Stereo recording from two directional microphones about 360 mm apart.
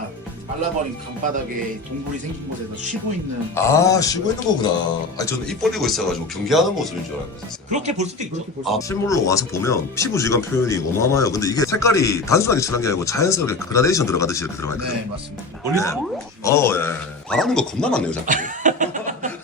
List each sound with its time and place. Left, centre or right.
3.5 s speech: centre
7.7 s speech: centre
8.6 s speech: centre
18.3 s cough: right